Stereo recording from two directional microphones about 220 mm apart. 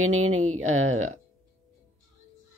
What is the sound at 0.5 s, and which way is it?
Speech, 70° right (ahead or behind).